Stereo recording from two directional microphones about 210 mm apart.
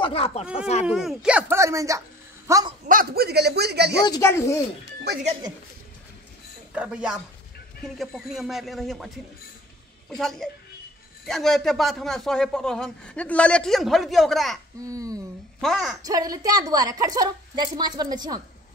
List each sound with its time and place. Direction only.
0.0 s speech: 25° left (ahead or behind)
0.8 s speech: 5° right (ahead or behind)
2.9 s a man's voice: 45° right (ahead or behind)
4.0 s speech: 15° left (ahead or behind)
6.7 s a man's voice: 5° right (ahead or behind)
14.9 s a woman's voice: 15° right (ahead or behind)
15.6 s a man's voice: centre (ahead or behind)
16.1 s a woman's voice: 15° right (ahead or behind)